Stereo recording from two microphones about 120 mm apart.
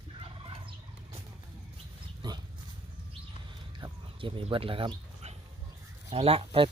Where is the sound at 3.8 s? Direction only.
45° right (ahead or behind).